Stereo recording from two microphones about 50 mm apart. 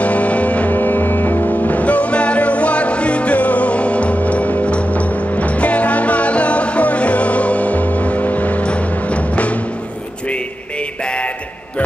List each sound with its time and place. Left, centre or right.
0.0 s music: left